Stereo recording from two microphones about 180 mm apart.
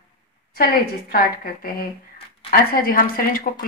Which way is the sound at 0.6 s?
55° left (ahead or behind).